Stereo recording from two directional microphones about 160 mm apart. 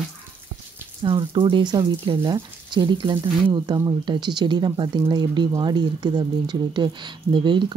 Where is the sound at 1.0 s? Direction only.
30° right (ahead or behind).